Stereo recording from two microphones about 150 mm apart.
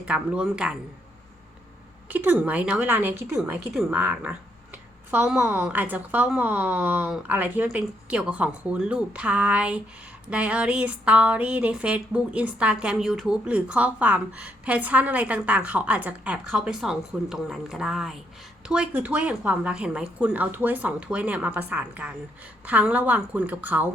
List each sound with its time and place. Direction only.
0.0 s speech: 5° right (ahead or behind)
2.0 s speech: 10° right (ahead or behind)